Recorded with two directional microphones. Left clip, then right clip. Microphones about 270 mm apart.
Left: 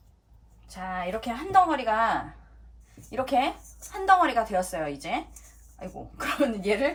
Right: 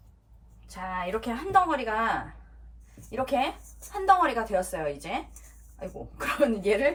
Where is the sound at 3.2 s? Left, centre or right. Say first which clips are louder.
Left 2 dB; centre.